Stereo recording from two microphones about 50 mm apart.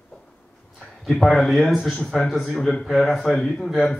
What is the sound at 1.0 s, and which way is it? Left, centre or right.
Speech, centre.